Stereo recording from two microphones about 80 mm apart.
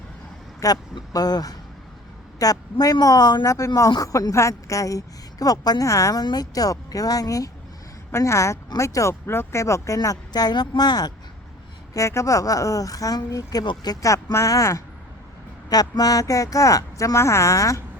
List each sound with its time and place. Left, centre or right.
0.6 s a woman's voice: left
1.1 s a woman's voice: left
3.4 s a woman's voice: left
6.2 s a woman's voice: left
11.9 s a woman's voice: left
15.7 s a woman's voice: left